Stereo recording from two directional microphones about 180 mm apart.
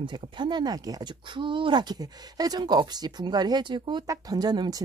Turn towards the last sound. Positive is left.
turn(degrees=-20)  # may be behind; listen again after turning